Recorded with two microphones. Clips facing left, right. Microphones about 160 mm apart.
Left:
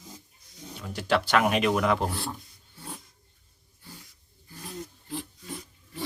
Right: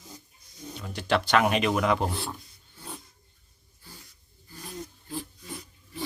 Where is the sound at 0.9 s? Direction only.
5° left (ahead or behind).